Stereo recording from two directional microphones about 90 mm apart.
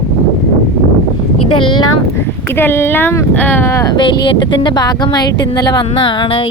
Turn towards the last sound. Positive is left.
turn(degrees=75)  # may be behind; listen again after turning